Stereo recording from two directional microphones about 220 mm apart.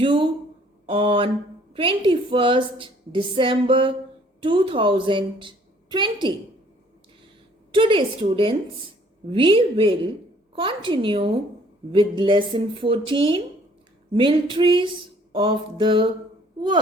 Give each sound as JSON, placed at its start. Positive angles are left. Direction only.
{"t": 0.0, "sound": "a woman's voice", "side_deg": -25}
{"t": 7.7, "sound": "a woman's voice", "side_deg": -20}